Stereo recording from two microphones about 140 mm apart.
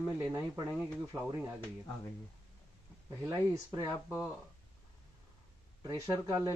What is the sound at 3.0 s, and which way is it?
Speech, 20° right (ahead or behind).